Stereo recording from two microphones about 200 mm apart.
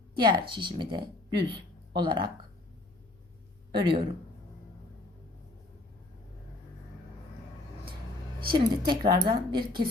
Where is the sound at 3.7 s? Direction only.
25° right (ahead or behind).